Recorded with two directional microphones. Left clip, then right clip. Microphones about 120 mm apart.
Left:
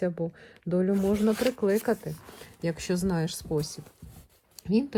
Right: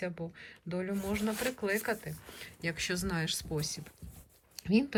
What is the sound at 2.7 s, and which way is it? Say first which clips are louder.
Speech: left 4 dB; 50° left (ahead or behind).